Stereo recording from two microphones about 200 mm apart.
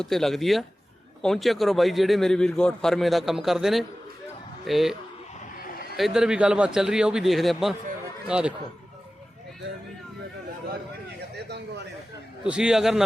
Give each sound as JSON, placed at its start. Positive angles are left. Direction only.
{"t": 0.0, "sound": "a man's voice", "side_deg": 0}
{"t": 6.0, "sound": "a man's voice", "side_deg": -5}
{"t": 11.3, "sound": "a sound", "side_deg": -55}
{"t": 12.5, "sound": "a man's voice", "side_deg": -5}